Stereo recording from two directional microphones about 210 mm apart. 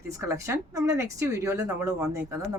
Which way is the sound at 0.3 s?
15° right (ahead or behind).